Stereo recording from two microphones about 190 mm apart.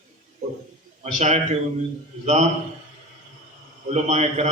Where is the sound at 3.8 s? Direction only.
35° right (ahead or behind).